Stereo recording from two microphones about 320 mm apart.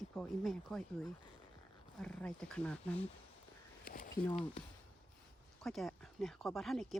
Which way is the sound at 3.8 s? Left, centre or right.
Left.